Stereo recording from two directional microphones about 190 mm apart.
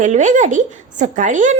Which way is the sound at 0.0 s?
40° right (ahead or behind).